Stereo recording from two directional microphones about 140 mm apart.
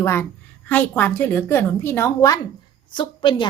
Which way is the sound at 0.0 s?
20° left (ahead or behind).